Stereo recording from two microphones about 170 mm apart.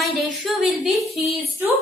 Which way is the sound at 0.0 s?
Centre (ahead or behind).